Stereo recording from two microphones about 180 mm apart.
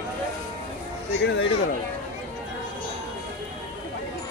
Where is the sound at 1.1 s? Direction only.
75° left (ahead or behind).